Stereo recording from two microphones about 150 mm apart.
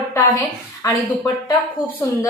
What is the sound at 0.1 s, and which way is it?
A woman's voice, 25° left (ahead or behind).